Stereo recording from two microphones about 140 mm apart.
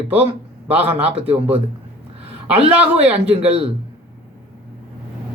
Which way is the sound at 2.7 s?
10° right (ahead or behind).